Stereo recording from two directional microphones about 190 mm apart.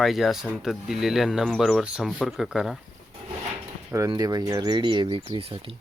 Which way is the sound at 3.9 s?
20° right (ahead or behind).